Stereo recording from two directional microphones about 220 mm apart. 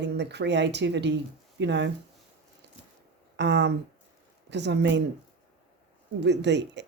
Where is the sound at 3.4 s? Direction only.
50° right (ahead or behind).